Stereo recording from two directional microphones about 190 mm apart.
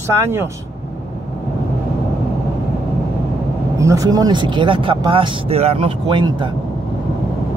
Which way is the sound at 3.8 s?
15° right (ahead or behind).